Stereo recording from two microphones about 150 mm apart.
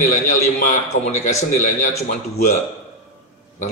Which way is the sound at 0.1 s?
50° left (ahead or behind).